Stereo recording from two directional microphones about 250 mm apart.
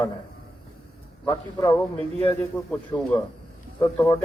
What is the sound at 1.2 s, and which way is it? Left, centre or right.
Speech, centre.